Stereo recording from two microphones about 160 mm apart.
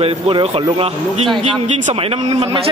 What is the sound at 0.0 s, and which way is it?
A man's voice, 35° right (ahead or behind).